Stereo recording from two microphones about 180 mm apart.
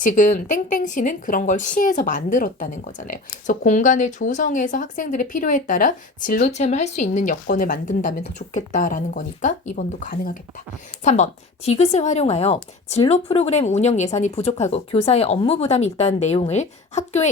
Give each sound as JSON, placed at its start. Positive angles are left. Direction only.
{"t": 0.0, "sound": "speech", "side_deg": 45}
{"t": 11.0, "sound": "speech", "side_deg": 40}